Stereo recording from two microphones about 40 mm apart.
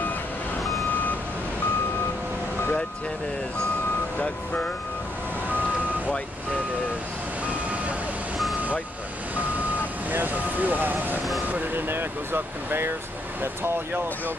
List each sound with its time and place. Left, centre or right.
10.1 s speech: right
11.7 s speech: right
13.4 s speech: right